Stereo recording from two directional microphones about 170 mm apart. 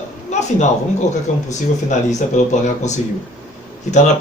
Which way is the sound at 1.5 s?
45° left (ahead or behind).